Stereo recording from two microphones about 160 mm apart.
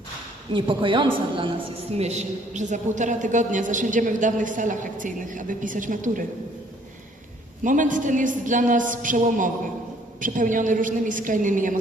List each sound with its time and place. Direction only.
0.5 s a woman's voice: 30° right (ahead or behind)
2.0 s a woman's voice: 45° right (ahead or behind)
7.6 s a woman's voice: 55° right (ahead or behind)